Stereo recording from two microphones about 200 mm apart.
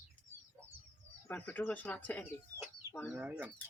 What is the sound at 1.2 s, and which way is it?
Speech, 10° left (ahead or behind).